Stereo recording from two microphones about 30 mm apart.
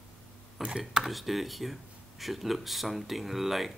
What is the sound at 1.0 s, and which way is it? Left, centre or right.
Speech, centre.